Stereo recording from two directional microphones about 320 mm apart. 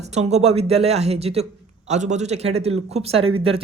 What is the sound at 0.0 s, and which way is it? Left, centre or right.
Speech, right.